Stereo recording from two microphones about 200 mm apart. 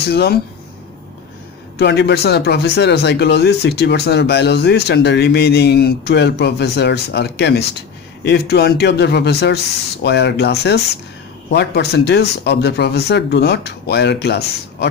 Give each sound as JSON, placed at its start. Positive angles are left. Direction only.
{"t": 0.1, "sound": "speech", "side_deg": 55}
{"t": 1.8, "sound": "speech", "side_deg": 55}